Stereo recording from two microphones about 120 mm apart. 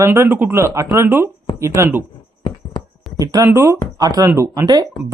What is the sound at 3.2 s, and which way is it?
Speech, 30° right (ahead or behind).